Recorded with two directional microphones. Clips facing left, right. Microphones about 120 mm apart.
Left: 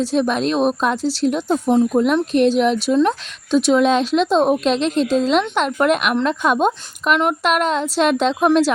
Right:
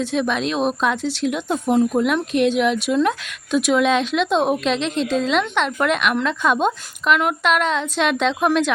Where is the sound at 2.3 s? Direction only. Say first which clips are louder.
Left 2 dB; 35° left (ahead or behind).